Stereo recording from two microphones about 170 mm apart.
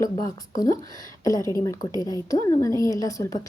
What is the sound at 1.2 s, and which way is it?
A woman's voice, 20° left (ahead or behind).